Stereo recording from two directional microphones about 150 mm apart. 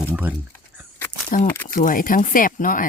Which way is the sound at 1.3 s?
65° left (ahead or behind).